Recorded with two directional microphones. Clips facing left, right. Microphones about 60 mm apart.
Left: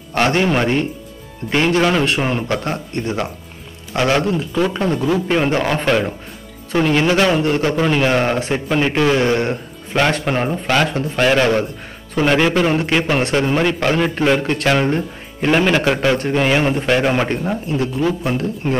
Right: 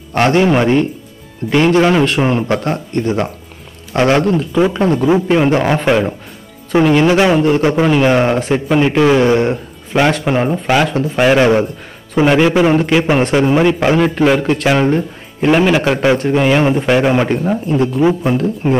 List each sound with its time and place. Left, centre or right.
0.3 s a man's voice: centre
2.7 s a man's voice: centre
3.9 s a man's voice: centre
4.2 s a man's voice: centre
4.6 s speech: centre
5.9 s a man's voice: centre
7.6 s a man's voice: centre
11.1 s a man's voice: centre